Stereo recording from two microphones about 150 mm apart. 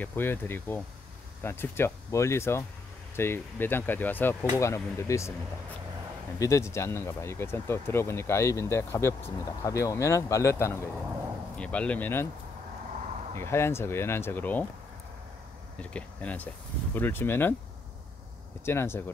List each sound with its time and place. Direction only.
0.0 s speech: 15° left (ahead or behind)
6.4 s speech: 20° left (ahead or behind)
11.5 s speech: 10° left (ahead or behind)
13.3 s speech: 15° left (ahead or behind)
15.8 s speech: 10° left (ahead or behind)
18.7 s speech: 15° left (ahead or behind)